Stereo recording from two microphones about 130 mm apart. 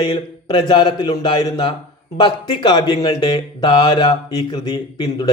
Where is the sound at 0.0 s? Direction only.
35° left (ahead or behind).